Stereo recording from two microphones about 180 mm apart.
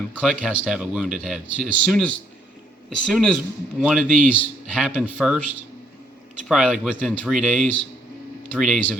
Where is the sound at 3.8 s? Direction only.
5° right (ahead or behind).